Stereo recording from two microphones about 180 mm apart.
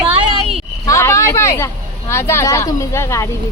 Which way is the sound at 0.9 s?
15° left (ahead or behind).